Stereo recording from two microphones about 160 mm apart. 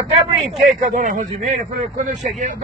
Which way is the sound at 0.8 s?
50° right (ahead or behind).